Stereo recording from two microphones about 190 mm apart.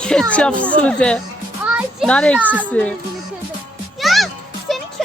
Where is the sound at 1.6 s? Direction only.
5° right (ahead or behind).